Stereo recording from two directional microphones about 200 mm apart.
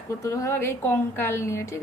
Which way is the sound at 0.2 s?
15° left (ahead or behind).